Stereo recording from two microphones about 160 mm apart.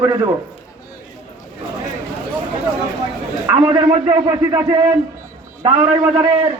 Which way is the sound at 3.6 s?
35° right (ahead or behind).